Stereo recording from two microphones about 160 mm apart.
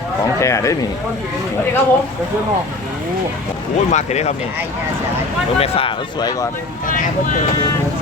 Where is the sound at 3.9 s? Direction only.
45° left (ahead or behind).